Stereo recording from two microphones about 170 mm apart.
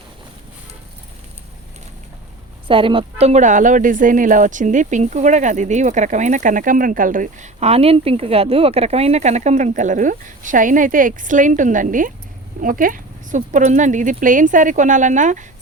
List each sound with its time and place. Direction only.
2.6 s speech: 30° right (ahead or behind); by 15.4 s 45° right (ahead or behind)